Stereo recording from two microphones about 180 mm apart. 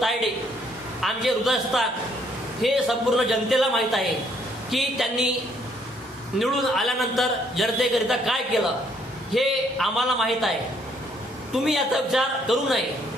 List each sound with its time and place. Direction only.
1.0 s a man's voice: centre (ahead or behind)
6.4 s a man's voice: centre (ahead or behind)
11.5 s a man's voice: centre (ahead or behind)